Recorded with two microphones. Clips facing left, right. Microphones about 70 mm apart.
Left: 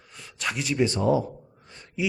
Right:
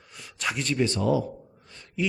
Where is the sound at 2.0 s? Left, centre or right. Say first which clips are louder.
Even; centre.